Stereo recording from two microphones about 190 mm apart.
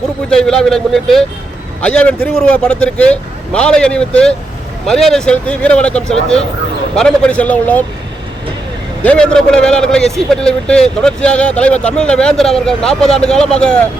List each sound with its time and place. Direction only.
0.3 s a man's voice: 5° left (ahead or behind)
9.0 s speech: 5° left (ahead or behind)